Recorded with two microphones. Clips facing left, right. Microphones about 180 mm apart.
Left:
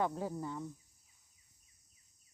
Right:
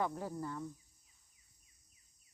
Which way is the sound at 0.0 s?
15° left (ahead or behind).